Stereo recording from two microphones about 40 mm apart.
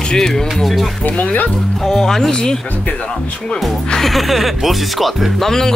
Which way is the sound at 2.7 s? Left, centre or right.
Left.